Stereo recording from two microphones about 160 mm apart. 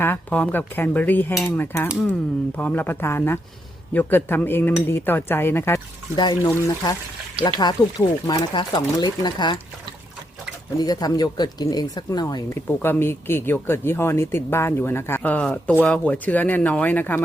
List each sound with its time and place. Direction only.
0.0 s speech: 10° left (ahead or behind); by 9.6 s 25° left (ahead or behind)
10.8 s speech: 25° left (ahead or behind)
12.5 s speech: 15° left (ahead or behind)